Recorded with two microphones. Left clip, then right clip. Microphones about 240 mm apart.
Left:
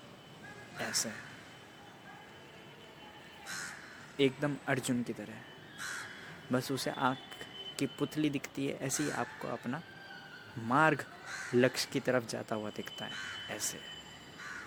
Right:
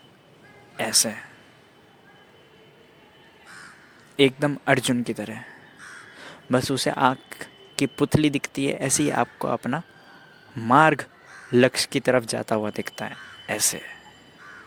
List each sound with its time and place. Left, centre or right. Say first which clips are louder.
0.8 s speech: right 13 dB; right
4.2 s speech: right 11 dB; right
6.5 s speech: right 12 dB; right